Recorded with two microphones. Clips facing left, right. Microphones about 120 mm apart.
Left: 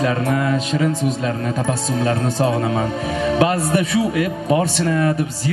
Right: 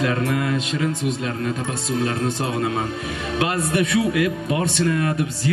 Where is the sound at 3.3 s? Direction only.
35° left (ahead or behind).